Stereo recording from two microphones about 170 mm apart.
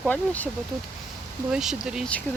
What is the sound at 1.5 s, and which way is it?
Speech, 5° right (ahead or behind).